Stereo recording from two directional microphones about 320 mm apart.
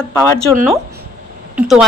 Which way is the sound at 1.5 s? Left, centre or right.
Centre.